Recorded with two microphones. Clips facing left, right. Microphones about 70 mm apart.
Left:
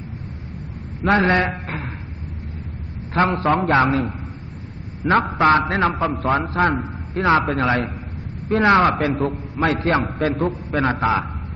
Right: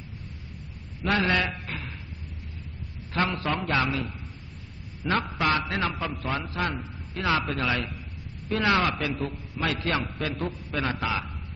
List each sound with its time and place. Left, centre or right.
1.0 s a man's voice: left
3.2 s a man's voice: left